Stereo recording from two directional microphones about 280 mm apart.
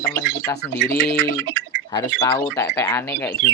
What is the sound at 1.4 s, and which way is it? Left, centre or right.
Bird, right.